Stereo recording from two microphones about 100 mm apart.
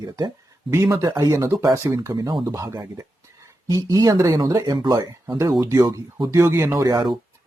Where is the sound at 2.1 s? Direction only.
45° right (ahead or behind).